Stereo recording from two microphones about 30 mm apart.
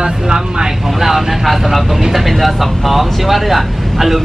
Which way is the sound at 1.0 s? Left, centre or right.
Centre.